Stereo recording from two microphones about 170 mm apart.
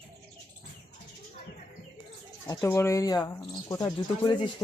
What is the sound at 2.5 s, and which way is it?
Speech, 15° left (ahead or behind).